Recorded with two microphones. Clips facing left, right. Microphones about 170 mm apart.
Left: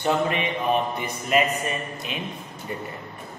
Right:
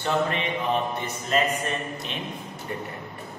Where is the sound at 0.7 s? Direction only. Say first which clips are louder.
Left 3 dB; 10° left (ahead or behind).